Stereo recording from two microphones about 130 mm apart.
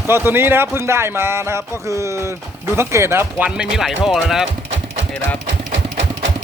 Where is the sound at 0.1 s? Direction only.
15° right (ahead or behind).